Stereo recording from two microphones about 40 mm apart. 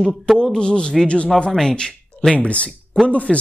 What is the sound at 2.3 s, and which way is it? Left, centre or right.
Speech, left.